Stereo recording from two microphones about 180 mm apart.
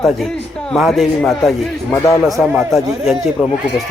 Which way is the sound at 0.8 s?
Centre (ahead or behind).